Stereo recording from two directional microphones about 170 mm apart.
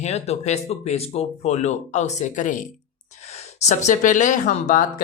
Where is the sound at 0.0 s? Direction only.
40° left (ahead or behind).